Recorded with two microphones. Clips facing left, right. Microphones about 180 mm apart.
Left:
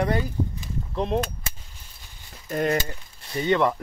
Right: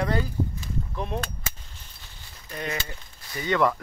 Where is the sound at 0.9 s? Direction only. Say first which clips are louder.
Left 8 dB; 25° left (ahead or behind).